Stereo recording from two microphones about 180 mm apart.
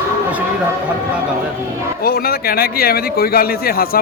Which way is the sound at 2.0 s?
55° left (ahead or behind).